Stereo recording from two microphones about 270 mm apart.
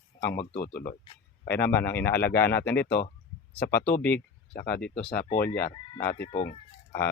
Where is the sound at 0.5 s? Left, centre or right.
Left.